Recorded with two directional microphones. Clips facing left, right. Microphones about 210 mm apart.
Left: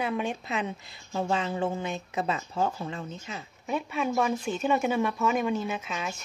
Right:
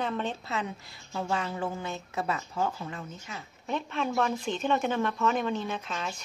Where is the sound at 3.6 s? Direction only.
10° left (ahead or behind).